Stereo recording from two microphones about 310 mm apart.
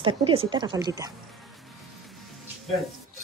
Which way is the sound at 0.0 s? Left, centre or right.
Centre.